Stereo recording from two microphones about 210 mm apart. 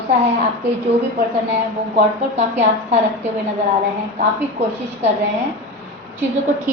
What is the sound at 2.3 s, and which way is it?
Speech, 30° right (ahead or behind).